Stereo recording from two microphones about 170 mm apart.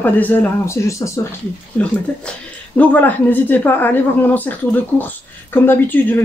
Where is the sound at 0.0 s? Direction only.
10° left (ahead or behind).